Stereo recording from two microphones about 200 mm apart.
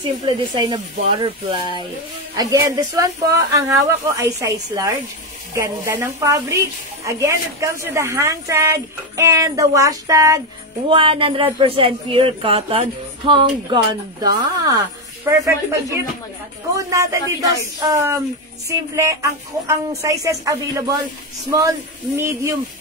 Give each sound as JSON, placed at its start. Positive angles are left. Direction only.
{"t": 0.0, "sound": "a woman's voice", "side_deg": -20}